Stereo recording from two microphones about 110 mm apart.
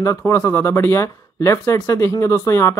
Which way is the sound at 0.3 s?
20° left (ahead or behind).